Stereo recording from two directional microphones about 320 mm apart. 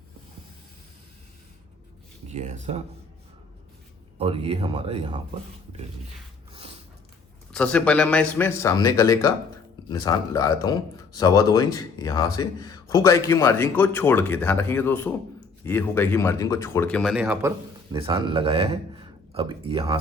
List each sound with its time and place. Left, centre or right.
2.3 s speech: right
4.2 s speech: centre
6.5 s a sound: centre
7.5 s a man's voice: centre
17.9 s a man's voice: centre